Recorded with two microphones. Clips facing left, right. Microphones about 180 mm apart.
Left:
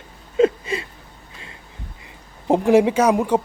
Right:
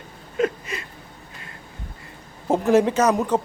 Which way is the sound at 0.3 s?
25° left (ahead or behind).